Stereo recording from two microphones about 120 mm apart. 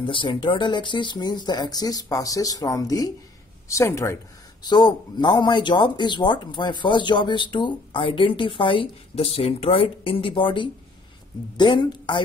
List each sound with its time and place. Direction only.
0.0 s speech: 45° left (ahead or behind); by 4.2 s 25° left (ahead or behind)
4.6 s speech: 35° left (ahead or behind)